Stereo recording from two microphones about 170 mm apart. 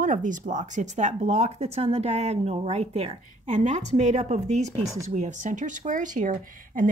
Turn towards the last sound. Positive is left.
turn(degrees=-55)  # may be behind; listen again after turning